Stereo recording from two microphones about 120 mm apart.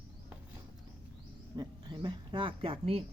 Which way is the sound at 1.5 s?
40° right (ahead or behind).